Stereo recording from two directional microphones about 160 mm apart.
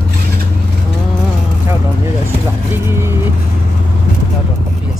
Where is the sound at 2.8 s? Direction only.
15° right (ahead or behind).